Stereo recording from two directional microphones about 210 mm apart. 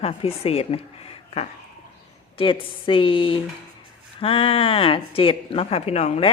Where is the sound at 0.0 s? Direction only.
30° left (ahead or behind).